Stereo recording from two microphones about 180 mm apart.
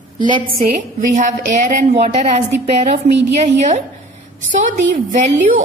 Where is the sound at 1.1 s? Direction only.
40° right (ahead or behind).